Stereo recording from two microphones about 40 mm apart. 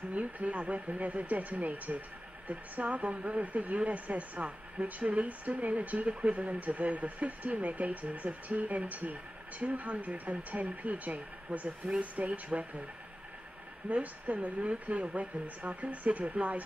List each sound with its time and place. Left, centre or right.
0.1 s speech: right
13.8 s speech: right